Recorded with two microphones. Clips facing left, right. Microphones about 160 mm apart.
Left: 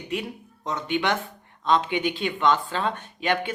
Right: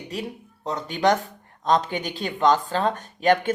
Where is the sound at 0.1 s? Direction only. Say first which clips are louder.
Left 2 dB; 35° right (ahead or behind).